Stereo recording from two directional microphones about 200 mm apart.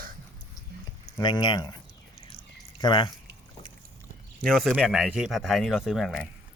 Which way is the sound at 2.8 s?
25° left (ahead or behind).